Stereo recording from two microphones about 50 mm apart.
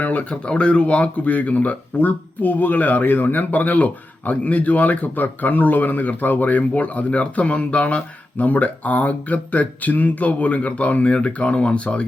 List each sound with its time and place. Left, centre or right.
0.0 s speech: left
8.4 s speech: left